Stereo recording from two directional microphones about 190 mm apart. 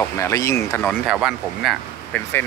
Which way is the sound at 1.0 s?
5° right (ahead or behind).